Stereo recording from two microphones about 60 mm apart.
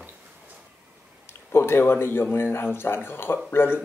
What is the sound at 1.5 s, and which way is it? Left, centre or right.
Speech, left.